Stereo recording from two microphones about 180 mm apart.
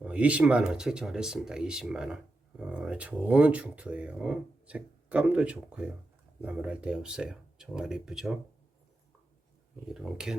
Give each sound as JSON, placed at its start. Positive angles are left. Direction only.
{"t": 0.0, "sound": "speech", "side_deg": -5}
{"t": 9.9, "sound": "speech", "side_deg": -5}